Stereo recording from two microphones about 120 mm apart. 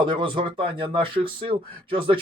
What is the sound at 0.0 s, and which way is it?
Speech, 40° right (ahead or behind).